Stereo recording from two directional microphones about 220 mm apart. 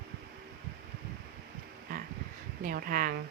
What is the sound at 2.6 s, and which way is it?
Speech, 40° right (ahead or behind).